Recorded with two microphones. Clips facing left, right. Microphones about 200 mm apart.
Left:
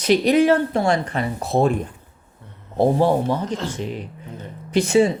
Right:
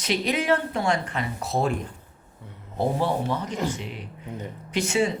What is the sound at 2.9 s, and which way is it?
Speech, 35° left (ahead or behind).